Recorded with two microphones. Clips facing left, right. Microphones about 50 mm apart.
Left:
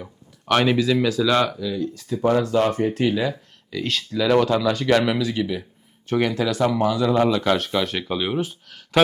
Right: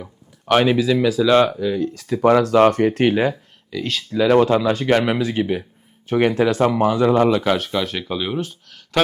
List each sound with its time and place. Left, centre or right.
0.0 s speech: centre
1.3 s speech: right
1.5 s speech: right
2.0 s speech: right
3.7 s speech: centre
4.1 s speech: right
7.3 s speech: centre
7.5 s speech: centre